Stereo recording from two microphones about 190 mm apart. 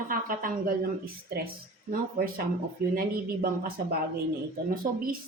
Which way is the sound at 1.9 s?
50° right (ahead or behind).